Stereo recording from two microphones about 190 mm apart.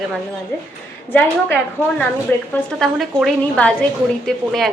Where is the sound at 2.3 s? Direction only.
10° left (ahead or behind).